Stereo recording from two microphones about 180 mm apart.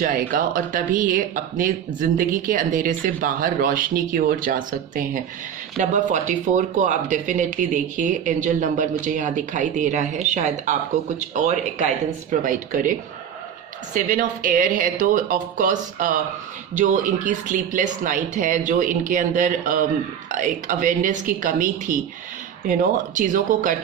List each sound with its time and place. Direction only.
0.0 s speech: 50° right (ahead or behind)